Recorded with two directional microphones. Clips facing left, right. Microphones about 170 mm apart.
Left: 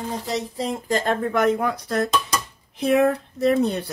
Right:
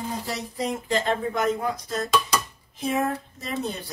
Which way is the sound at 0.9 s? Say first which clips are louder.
Left 4 dB; 50° left (ahead or behind).